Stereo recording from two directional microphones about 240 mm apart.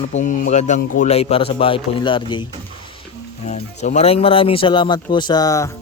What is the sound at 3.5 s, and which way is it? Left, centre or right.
Speech, left.